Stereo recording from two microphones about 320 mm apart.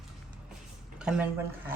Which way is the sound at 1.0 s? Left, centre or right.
Centre.